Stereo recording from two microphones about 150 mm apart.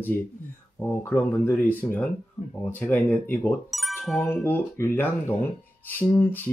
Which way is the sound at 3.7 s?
Centre (ahead or behind).